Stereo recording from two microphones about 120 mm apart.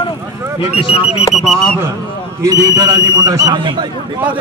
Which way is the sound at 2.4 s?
30° right (ahead or behind).